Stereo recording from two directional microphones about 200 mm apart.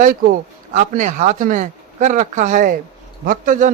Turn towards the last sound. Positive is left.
turn(degrees=-40)  # may be behind; listen again after turning